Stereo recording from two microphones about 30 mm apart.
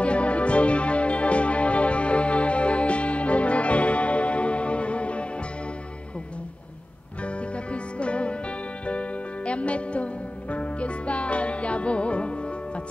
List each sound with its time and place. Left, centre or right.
0.0 s music: left
7.2 s music: left